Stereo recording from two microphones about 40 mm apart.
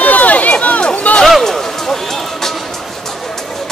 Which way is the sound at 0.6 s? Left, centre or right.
Left.